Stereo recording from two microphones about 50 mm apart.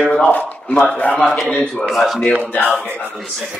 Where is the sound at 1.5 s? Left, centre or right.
Centre.